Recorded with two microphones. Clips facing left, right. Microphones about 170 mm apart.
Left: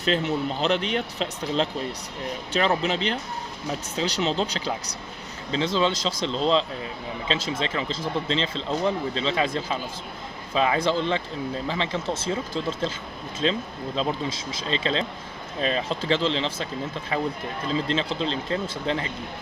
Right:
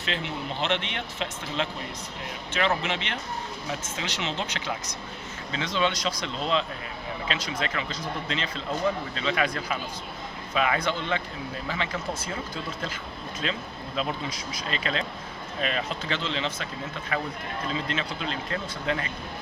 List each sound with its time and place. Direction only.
0.0 s speech: 40° left (ahead or behind)
13.4 s speech: 30° left (ahead or behind)